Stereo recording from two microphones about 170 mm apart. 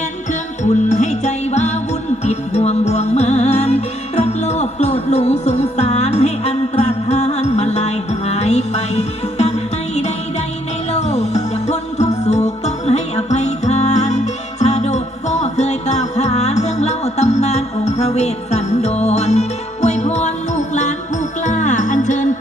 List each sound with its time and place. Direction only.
0.3 s music: 45° left (ahead or behind)